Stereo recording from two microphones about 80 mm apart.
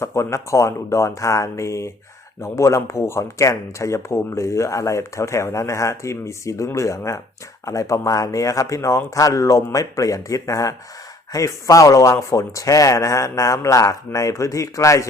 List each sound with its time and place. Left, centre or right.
0.0 s a man's voice: left